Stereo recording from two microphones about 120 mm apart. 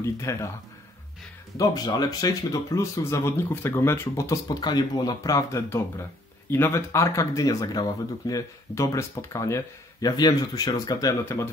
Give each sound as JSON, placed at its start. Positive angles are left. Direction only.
{"t": 0.0, "sound": "speech", "side_deg": 25}
{"t": 1.6, "sound": "speech", "side_deg": 30}